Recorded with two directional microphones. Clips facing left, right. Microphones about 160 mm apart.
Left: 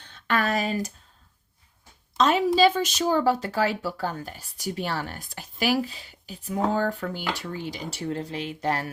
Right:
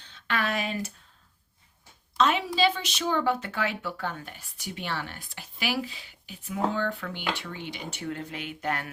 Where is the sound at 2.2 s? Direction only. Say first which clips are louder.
Left 5 dB; 40° left (ahead or behind).